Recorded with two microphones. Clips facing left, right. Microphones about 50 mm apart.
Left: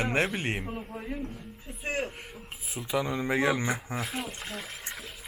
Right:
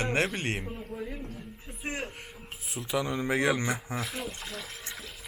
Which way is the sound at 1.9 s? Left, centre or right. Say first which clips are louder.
Left 4 dB; centre.